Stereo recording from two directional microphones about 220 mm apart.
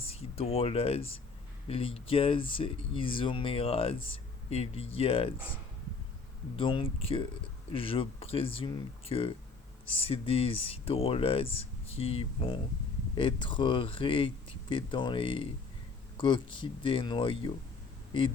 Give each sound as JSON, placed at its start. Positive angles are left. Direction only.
{"t": 0.1, "sound": "speech", "side_deg": 25}
{"t": 6.6, "sound": "speech", "side_deg": 25}